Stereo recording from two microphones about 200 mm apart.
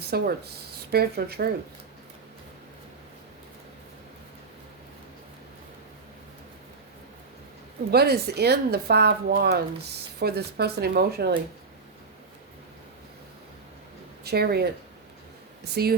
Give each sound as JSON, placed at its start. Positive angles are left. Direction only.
{"t": 0.0, "sound": "speech", "side_deg": -55}
{"t": 7.9, "sound": "speech", "side_deg": -55}
{"t": 14.3, "sound": "speech", "side_deg": -50}